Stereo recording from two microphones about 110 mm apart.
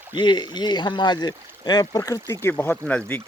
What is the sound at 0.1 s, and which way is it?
Speech, 45° left (ahead or behind).